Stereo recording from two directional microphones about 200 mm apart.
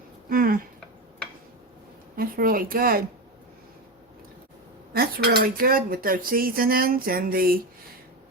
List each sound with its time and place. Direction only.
0.3 s speech: 45° right (ahead or behind)
2.1 s cutlery: 45° right (ahead or behind)
4.9 s cutlery: 50° right (ahead or behind)